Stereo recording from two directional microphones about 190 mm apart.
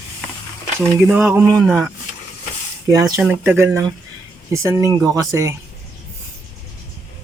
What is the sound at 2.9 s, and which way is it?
Speech, 20° right (ahead or behind).